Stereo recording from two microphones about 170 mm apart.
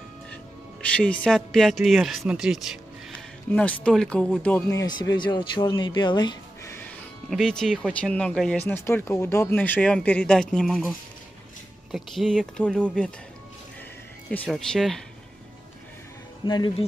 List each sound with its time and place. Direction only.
0.8 s speech: 5° left (ahead or behind)
4.6 s speech: 20° left (ahead or behind)
7.2 s speech: centre (ahead or behind)
11.9 s speech: centre (ahead or behind)
14.3 s speech: 5° left (ahead or behind)
16.4 s speech: 25° left (ahead or behind)